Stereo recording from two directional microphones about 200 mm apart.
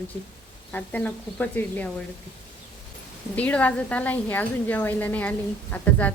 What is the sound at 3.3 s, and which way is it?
A woman's voice, 5° left (ahead or behind).